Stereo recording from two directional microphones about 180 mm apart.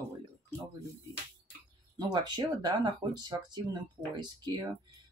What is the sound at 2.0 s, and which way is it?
Speech, 25° right (ahead or behind).